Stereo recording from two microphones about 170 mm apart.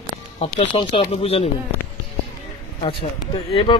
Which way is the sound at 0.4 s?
35° left (ahead or behind).